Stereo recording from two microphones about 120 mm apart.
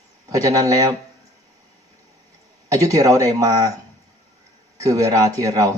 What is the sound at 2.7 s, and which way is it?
Speech, 30° right (ahead or behind).